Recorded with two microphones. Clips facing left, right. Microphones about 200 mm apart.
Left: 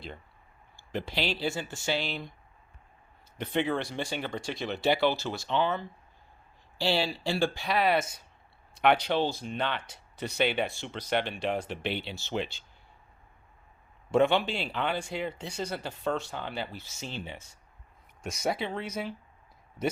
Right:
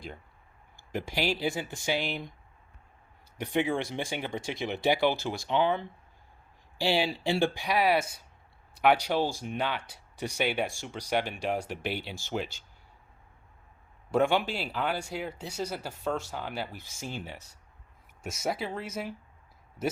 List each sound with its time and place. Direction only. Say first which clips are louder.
0.9 s speech: right 1 dB; 10° right (ahead or behind)
3.3 s speech: right 1 dB; 10° right (ahead or behind)
14.1 s speech: left 1 dB; 5° right (ahead or behind)